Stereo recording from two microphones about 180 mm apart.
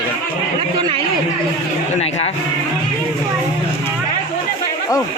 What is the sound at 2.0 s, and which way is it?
Speech, 35° left (ahead or behind).